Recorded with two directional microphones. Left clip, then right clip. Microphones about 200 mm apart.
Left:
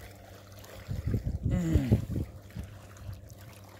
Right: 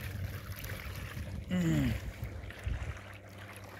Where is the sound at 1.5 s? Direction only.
5° left (ahead or behind).